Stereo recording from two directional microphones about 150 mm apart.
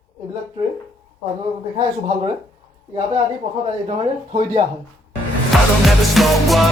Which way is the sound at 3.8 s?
40° right (ahead or behind).